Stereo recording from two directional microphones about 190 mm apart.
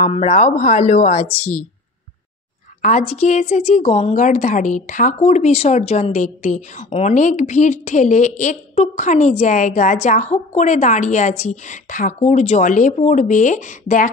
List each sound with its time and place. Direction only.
0.0 s a woman's voice: 35° left (ahead or behind)
1.4 s speech: 10° left (ahead or behind)
2.8 s a woman's voice: 40° left (ahead or behind)